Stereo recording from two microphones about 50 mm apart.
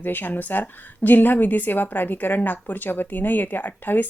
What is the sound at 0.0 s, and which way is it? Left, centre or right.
A woman's voice, left.